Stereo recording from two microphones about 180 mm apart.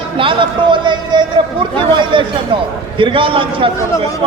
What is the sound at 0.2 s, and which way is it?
A man's voice, 30° right (ahead or behind).